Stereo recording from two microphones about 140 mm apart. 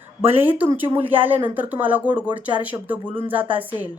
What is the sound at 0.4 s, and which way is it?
Speech, 15° right (ahead or behind).